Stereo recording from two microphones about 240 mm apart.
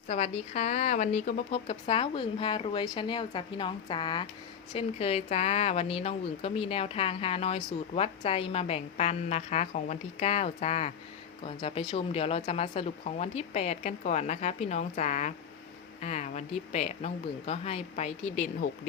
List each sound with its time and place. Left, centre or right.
0.1 s speech: left